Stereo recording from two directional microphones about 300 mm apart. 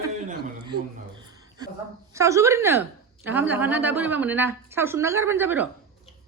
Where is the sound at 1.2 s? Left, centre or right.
Centre.